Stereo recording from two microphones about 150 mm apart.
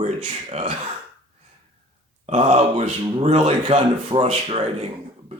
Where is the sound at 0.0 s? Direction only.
50° right (ahead or behind).